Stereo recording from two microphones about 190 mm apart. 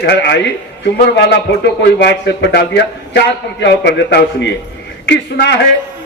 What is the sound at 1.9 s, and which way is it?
A man's voice, 60° left (ahead or behind).